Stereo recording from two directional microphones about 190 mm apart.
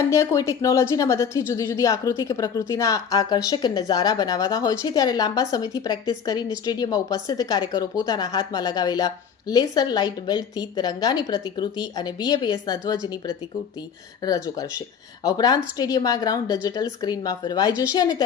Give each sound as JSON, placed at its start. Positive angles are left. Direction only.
{"t": 0.1, "sound": "a woman's voice", "side_deg": 15}
{"t": 14.2, "sound": "a woman's voice", "side_deg": 20}